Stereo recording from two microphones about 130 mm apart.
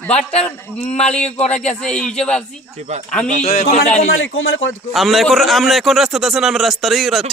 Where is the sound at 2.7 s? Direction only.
60° right (ahead or behind).